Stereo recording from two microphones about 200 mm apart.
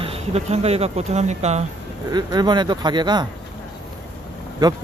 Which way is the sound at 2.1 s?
20° right (ahead or behind).